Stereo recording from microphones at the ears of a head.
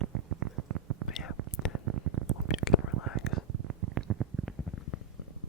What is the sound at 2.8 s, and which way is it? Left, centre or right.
Whispering, right.